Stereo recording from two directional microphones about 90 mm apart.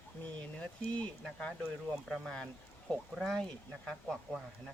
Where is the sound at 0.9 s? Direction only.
10° left (ahead or behind).